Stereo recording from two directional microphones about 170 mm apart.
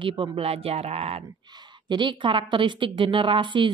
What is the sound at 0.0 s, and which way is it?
A woman's voice, 30° right (ahead or behind).